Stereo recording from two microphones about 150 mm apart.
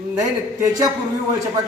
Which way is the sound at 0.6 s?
25° right (ahead or behind).